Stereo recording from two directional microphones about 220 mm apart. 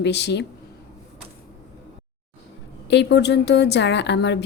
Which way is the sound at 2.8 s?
50° left (ahead or behind).